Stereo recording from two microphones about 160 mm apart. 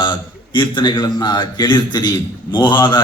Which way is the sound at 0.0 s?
30° left (ahead or behind).